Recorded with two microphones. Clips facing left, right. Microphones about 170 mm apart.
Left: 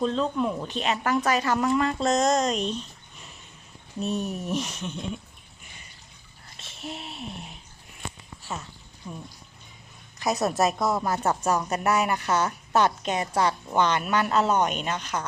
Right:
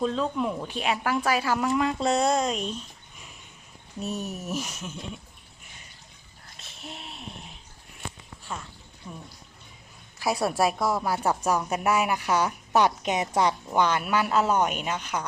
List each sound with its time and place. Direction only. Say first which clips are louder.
0.0 s speech: left 1 dB; 5° right (ahead or behind)
6.6 s a sound: left 5 dB; centre (ahead or behind)
9.0 s a woman's voice: left 3 dB; 5° left (ahead or behind)